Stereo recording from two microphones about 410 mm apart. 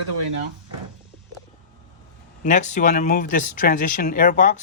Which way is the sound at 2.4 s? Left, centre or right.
Centre.